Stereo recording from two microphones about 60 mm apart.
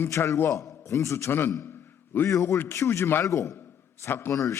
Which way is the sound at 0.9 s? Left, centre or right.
Left.